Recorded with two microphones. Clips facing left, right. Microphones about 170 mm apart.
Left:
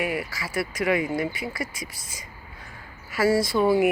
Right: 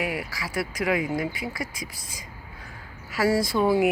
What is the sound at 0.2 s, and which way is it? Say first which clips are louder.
Speech: left 1 dB; centre (ahead or behind).